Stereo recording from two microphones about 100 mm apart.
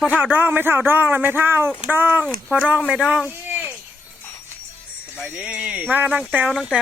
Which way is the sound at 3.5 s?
20° right (ahead or behind).